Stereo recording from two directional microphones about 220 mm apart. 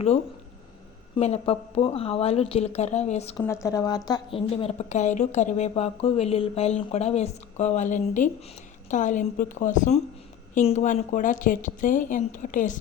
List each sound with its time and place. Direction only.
1.1 s a woman's voice: 25° left (ahead or behind)
3.4 s a woman's voice: 15° left (ahead or behind); by 12.7 s 35° left (ahead or behind)